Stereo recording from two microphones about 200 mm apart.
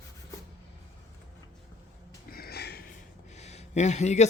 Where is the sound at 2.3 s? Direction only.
50° left (ahead or behind).